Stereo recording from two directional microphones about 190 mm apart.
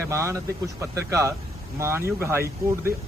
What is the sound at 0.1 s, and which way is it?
Speech, 15° right (ahead or behind).